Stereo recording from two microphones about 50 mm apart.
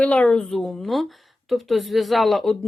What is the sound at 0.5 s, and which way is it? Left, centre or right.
Speech, centre.